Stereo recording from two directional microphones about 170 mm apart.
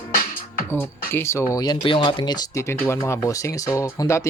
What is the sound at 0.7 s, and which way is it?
Speech, 15° left (ahead or behind).